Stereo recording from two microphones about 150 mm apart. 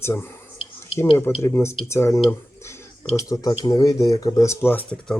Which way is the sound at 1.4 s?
15° left (ahead or behind).